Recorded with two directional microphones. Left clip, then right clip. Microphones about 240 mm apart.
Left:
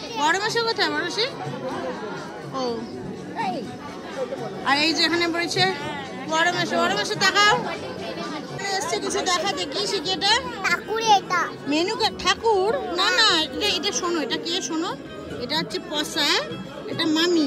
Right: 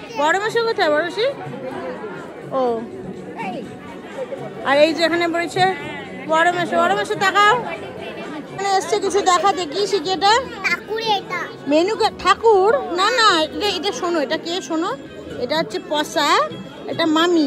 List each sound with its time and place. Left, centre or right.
0.2 s a child's voice: centre
2.5 s a child's voice: centre
3.3 s children playing: left
4.6 s a child's voice: centre
8.5 s a child's voice: centre
11.0 s a sound: left
11.3 s a child's voice: centre